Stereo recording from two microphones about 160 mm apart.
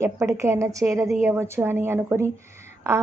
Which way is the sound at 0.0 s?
20° right (ahead or behind).